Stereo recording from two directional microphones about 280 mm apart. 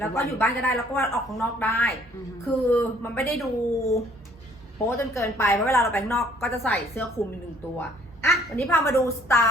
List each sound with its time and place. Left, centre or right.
0.0 s a woman's voice: centre